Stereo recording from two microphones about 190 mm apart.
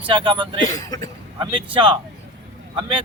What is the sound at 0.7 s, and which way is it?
Speech, 20° left (ahead or behind).